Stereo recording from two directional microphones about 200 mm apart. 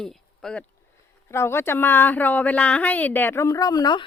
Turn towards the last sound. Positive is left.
turn(degrees=20)  # may be behind; listen again after turning